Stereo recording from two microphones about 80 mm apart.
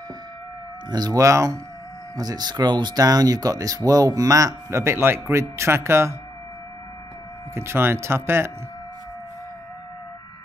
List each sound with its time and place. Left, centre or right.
0.8 s speech: right
2.1 s speech: right
7.5 s speech: right